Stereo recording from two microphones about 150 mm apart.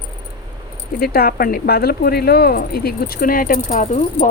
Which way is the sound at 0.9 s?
85° left.